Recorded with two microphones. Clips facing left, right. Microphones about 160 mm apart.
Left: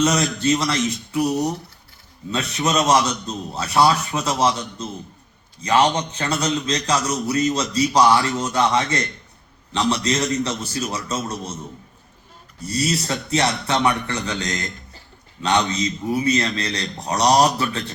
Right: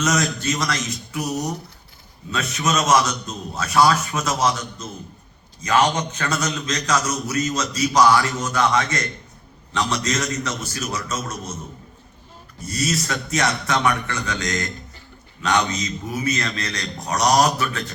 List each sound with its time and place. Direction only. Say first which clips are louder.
0.0 s a man's voice: left 3 dB; 30° left (ahead or behind)
12.6 s a man's voice: left 2 dB; 30° left (ahead or behind)